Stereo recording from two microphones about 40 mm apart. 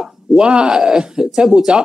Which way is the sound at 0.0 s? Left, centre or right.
Centre.